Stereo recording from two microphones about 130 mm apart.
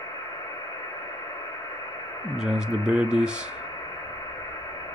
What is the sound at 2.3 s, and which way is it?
Speech, 5° right (ahead or behind).